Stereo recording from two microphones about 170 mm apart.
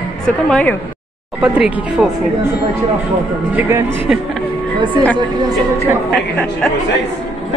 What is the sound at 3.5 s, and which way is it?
Speech, 15° right (ahead or behind).